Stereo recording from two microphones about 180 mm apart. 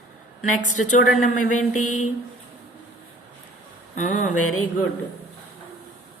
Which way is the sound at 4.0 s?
40° left (ahead or behind).